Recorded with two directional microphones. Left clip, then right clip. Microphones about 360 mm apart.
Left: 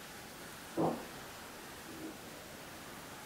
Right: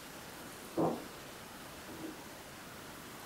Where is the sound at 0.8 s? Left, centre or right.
Centre.